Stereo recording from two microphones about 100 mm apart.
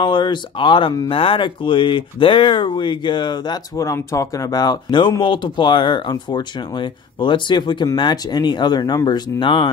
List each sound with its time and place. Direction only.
0.0 s speech: 50° left (ahead or behind)
3.7 s speech: 30° left (ahead or behind); by 9.7 s 55° left (ahead or behind)